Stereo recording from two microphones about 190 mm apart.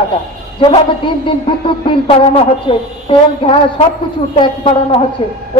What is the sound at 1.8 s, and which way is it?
A woman's voice, 30° left (ahead or behind).